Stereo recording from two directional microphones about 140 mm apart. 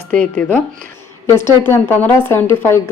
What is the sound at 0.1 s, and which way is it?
A woman's voice, 10° left (ahead or behind).